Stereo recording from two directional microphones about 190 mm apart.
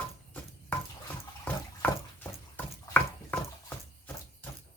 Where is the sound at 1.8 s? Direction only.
10° left (ahead or behind).